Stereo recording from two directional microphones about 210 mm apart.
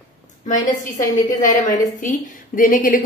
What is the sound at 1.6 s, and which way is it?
A woman's voice, 35° left (ahead or behind).